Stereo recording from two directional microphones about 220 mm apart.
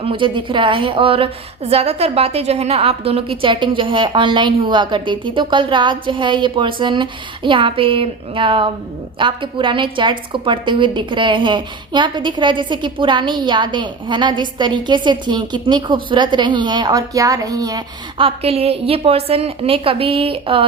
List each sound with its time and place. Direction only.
0.0 s a woman's voice: 20° right (ahead or behind)